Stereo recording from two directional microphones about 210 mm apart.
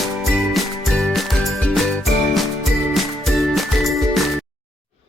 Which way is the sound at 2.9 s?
Centre (ahead or behind).